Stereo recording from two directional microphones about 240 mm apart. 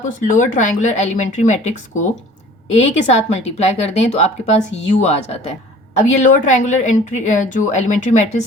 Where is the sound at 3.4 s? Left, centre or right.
Left.